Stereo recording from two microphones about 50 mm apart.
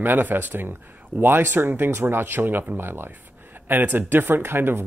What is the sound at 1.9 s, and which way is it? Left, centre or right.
Speech, right.